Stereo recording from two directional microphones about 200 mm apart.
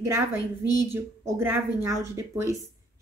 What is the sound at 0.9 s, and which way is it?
A woman's voice, 10° right (ahead or behind).